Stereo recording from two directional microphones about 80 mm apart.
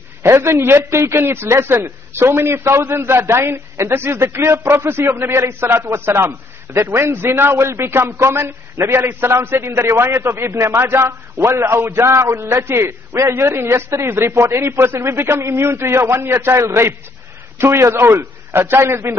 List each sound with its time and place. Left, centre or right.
0.2 s a man's voice: right